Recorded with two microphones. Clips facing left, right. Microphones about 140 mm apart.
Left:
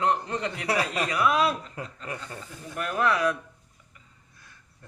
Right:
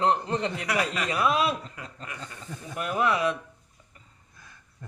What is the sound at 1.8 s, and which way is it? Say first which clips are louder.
Speech: left 5 dB; 35° left (ahead or behind).